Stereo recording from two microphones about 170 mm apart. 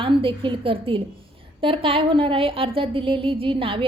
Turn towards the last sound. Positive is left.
turn(degrees=-30)  # may be behind; listen again after turning